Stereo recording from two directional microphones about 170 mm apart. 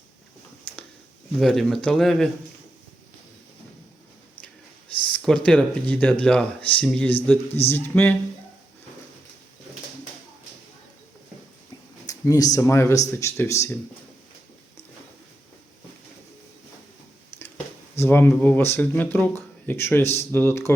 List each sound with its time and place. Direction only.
1.4 s speech: centre (ahead or behind)
5.0 s speech: 5° left (ahead or behind)
12.0 s a sound: 20° left (ahead or behind)
12.5 s speech: 15° left (ahead or behind)
17.3 s a sound: 15° left (ahead or behind)
17.9 s speech: 15° left (ahead or behind)